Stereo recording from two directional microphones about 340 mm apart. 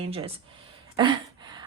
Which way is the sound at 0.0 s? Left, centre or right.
Centre.